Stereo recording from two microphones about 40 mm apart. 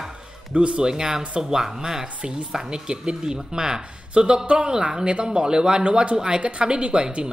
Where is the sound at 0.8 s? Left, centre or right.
Centre.